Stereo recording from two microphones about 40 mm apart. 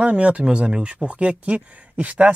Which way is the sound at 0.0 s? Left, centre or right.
Right.